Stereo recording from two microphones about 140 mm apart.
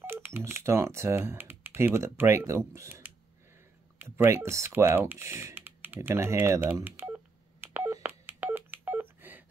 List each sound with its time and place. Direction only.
0.0 s speech: 15° right (ahead or behind)
7.6 s telephone dialing: 15° right (ahead or behind)